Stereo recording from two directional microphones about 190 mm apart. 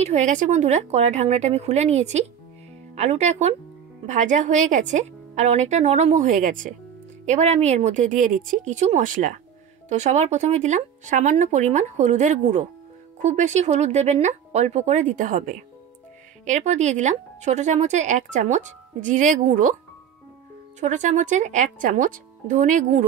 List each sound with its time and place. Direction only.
0.0 s speech: 40° right (ahead or behind)
20.8 s speech: 40° right (ahead or behind)